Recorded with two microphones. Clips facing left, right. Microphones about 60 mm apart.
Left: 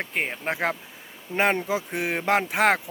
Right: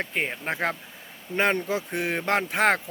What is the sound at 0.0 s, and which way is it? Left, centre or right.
Speech, centre.